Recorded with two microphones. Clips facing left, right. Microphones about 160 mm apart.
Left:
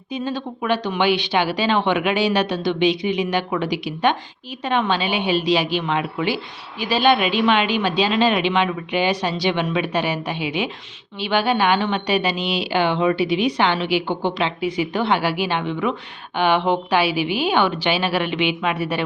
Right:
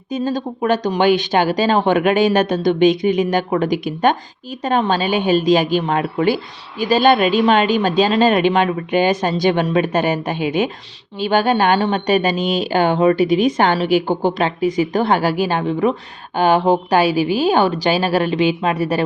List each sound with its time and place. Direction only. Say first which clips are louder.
0.1 s speech: right 5 dB; 40° right (ahead or behind)